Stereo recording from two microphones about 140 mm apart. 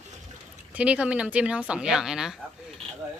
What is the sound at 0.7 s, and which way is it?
Speech, 10° right (ahead or behind).